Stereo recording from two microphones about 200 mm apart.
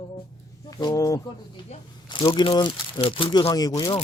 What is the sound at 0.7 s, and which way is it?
Speech, 20° left (ahead or behind).